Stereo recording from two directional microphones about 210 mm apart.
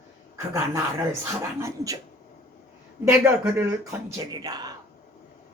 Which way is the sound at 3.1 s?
10° right (ahead or behind).